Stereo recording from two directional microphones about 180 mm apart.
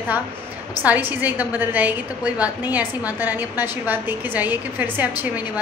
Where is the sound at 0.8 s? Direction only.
10° right (ahead or behind).